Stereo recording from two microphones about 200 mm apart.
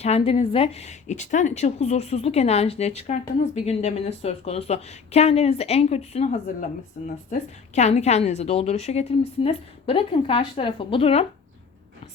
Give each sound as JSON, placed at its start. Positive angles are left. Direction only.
{"t": 0.0, "sound": "a woman's voice", "side_deg": 30}